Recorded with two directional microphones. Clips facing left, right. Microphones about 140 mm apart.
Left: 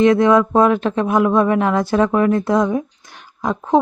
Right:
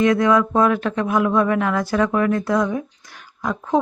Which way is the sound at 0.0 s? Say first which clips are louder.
Left 4 dB; 25° left (ahead or behind).